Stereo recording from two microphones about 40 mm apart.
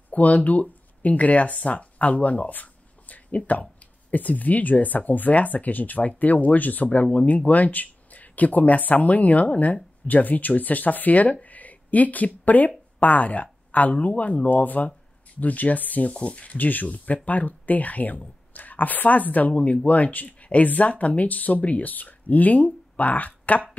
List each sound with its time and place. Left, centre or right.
0.1 s speech: left
11.4 s a sound: left
12.4 s speech: left
16.1 s speech: left
16.5 s speech: left